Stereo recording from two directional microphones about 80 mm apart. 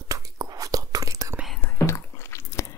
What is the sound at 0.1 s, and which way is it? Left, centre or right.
Whispering, right.